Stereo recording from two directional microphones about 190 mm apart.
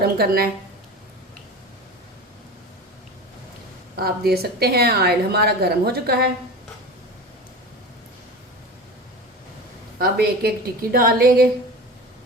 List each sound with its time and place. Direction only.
0.0 s a woman's voice: 55° right (ahead or behind)
3.9 s a woman's voice: 55° right (ahead or behind)
10.0 s a woman's voice: 55° right (ahead or behind)